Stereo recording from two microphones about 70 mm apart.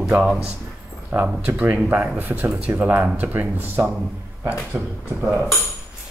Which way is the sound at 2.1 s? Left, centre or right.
Right.